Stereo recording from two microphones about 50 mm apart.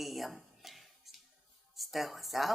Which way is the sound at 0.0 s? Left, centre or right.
Centre.